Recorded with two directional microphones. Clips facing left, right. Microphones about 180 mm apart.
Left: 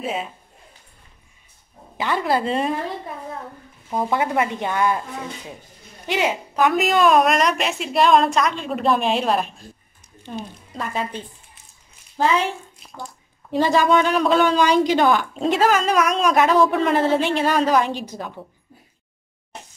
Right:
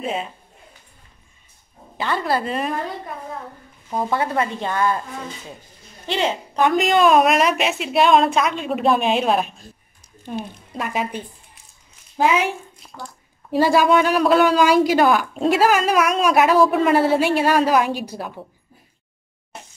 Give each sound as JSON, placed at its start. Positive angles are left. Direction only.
{"t": 0.0, "sound": "a woman's voice", "side_deg": 0}
{"t": 2.0, "sound": "a woman's voice", "side_deg": 15}
{"t": 4.1, "sound": "a woman's voice", "side_deg": 15}
{"t": 6.0, "sound": "a woman's voice", "side_deg": 10}